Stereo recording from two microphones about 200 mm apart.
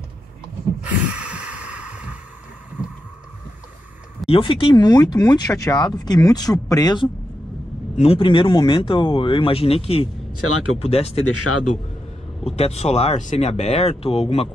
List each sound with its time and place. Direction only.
0.7 s snort: 5° right (ahead or behind)
4.3 s speech: 25° left (ahead or behind)
10.3 s speech: 90° left
10.8 s speech: 30° left (ahead or behind)
12.4 s speech: 30° left (ahead or behind)